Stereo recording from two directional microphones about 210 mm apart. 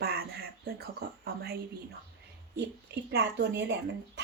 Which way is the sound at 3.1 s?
50° right (ahead or behind).